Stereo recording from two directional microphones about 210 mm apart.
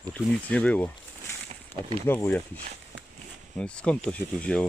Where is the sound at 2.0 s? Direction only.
10° left (ahead or behind).